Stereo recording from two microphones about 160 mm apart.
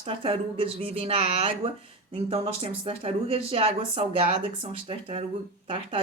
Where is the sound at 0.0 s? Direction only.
35° right (ahead or behind).